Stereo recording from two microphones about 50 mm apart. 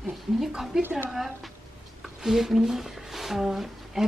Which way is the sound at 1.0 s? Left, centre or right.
Centre.